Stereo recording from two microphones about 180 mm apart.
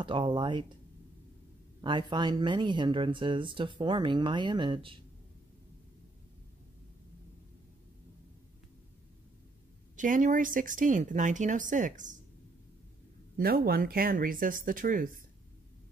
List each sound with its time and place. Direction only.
0.0 s speech: 25° right (ahead or behind)
1.8 s speech: 25° right (ahead or behind)
9.9 s speech: 45° right (ahead or behind)
13.4 s speech: 60° right (ahead or behind)